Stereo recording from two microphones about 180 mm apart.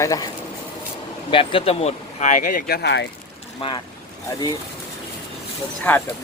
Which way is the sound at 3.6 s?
25° left (ahead or behind).